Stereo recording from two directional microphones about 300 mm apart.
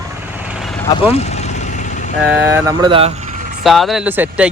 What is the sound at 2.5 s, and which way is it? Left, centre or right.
Speech, centre.